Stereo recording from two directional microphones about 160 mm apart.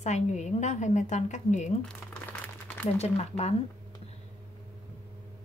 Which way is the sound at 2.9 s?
40° left (ahead or behind).